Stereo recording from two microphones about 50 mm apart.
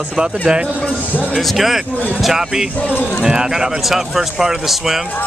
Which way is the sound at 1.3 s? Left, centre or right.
Centre.